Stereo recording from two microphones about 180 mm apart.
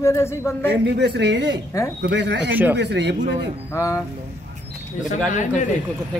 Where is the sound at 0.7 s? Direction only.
70° right (ahead or behind).